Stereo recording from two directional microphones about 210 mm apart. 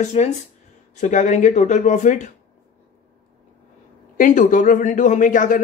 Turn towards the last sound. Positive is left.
turn(degrees=40)  # may be behind; listen again after turning